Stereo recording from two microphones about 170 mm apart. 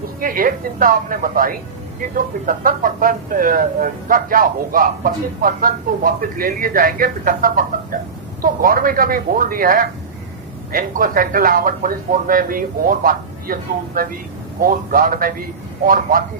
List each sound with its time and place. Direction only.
0.2 s speech: 55° right (ahead or behind)